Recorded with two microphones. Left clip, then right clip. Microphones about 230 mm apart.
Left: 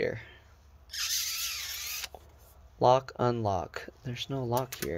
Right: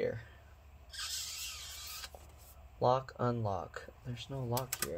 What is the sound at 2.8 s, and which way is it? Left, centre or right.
Speech, left.